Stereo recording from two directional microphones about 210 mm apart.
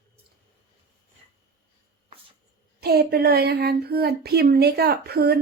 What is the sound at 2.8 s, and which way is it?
Speech, 50° right (ahead or behind).